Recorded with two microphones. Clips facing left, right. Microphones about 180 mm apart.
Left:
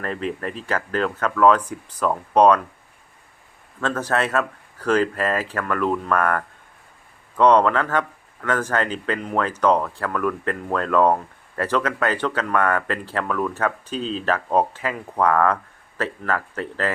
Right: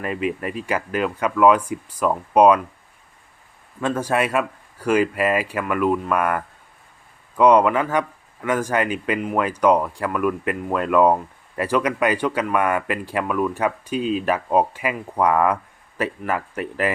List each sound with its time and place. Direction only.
0.0 s speech: 10° right (ahead or behind)
3.8 s speech: 10° right (ahead or behind)